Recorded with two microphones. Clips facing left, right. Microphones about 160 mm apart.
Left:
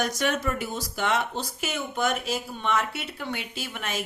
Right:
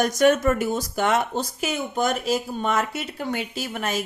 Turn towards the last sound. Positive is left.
turn(degrees=-40)  # may be behind; listen again after turning